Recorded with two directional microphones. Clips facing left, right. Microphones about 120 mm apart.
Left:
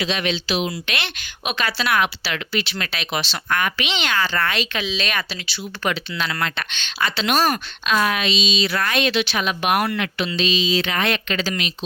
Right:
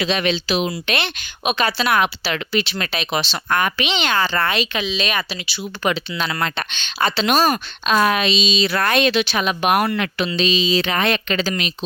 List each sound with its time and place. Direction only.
0.0 s speech: 45° right (ahead or behind)
0.9 s speech: 25° right (ahead or behind)
4.5 s speech: 15° right (ahead or behind)
7.9 s a woman's voice: 40° right (ahead or behind)
9.5 s a woman's voice: 30° right (ahead or behind)
11.4 s a woman's voice: 40° right (ahead or behind)